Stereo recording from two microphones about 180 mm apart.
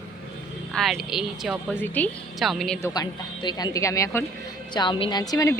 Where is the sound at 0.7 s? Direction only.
Centre (ahead or behind).